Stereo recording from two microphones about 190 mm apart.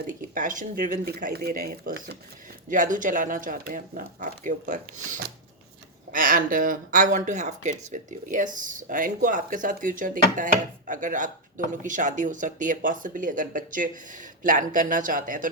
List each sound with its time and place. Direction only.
0.3 s speech: 45° right (ahead or behind)
2.6 s speech: 45° right (ahead or behind)